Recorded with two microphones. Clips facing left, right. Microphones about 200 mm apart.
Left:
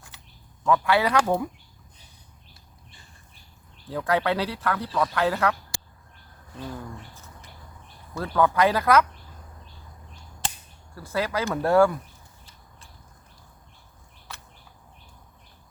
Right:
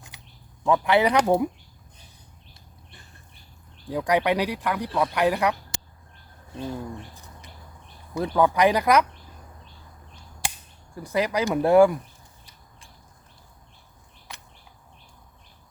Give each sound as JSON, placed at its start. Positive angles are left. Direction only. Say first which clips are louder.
{"t": 0.1, "sound": "a sound", "louder": "right 2 dB", "side_deg": -15}
{"t": 0.6, "sound": "speech", "louder": "right 2 dB", "side_deg": -20}
{"t": 3.8, "sound": "speech", "louder": "right 2 dB", "side_deg": -15}
{"t": 10.9, "sound": "speech", "louder": "right 3 dB", "side_deg": -15}